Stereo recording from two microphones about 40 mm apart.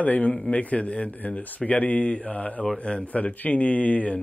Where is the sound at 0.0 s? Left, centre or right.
Left.